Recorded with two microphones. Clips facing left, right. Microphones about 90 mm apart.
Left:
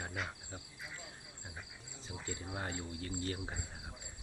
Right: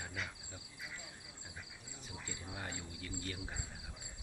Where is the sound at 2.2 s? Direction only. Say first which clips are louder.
Left 5 dB; 40° left (ahead or behind).